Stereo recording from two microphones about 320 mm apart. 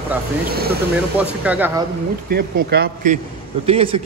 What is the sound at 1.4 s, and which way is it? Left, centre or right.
Speech, centre.